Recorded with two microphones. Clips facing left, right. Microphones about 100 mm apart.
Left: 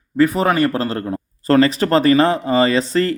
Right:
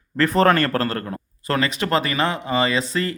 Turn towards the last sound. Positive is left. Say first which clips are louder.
# left 6 dB
turn(degrees=35)  # may be behind; listen again after turning